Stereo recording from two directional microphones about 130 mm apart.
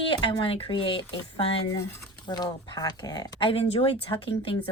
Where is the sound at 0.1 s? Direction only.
40° left (ahead or behind).